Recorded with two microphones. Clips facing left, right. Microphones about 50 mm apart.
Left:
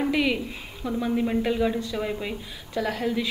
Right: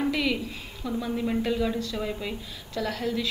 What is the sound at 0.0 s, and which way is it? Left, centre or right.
A woman's voice, left.